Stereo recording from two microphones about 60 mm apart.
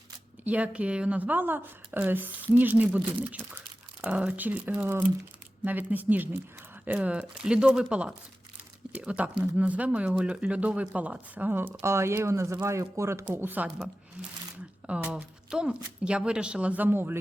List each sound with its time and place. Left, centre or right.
0.4 s speech: right
11.5 s speech: right
13.4 s speech: right
14.8 s speech: centre
16.8 s speech: right